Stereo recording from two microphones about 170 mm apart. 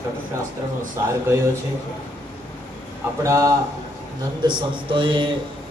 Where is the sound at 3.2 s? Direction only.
20° right (ahead or behind).